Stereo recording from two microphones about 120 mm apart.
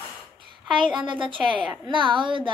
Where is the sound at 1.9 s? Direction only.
40° right (ahead or behind).